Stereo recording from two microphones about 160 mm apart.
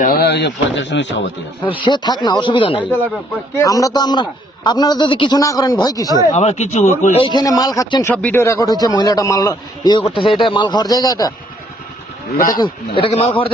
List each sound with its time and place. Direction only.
0.0 s speech: 75° left (ahead or behind); by 1.3 s 90° left
1.6 s speech: 30° left (ahead or behind)
3.6 s a man's voice: 20° left (ahead or behind)
6.3 s speech: 45° left (ahead or behind)
7.3 s a man's voice: 25° left (ahead or behind)
8.0 s a man's voice: 10° left (ahead or behind)
12.5 s a man's voice: 25° left (ahead or behind)